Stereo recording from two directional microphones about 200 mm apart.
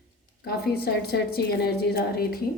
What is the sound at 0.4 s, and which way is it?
A woman's voice, 50° left (ahead or behind).